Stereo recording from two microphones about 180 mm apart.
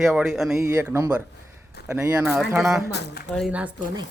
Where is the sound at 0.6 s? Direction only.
15° right (ahead or behind).